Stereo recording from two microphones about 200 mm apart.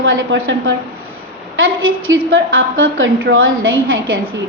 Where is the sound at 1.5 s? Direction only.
85° right.